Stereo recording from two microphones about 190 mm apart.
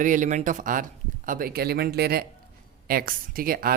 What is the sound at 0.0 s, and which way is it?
Speech, 45° right (ahead or behind).